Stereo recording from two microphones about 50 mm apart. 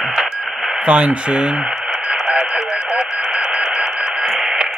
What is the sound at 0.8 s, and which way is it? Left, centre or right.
Speech, right.